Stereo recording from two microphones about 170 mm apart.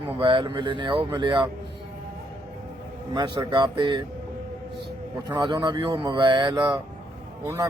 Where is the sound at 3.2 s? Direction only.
25° right (ahead or behind).